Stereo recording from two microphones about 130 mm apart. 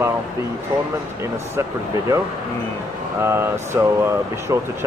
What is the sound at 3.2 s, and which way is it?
Speech, 20° right (ahead or behind).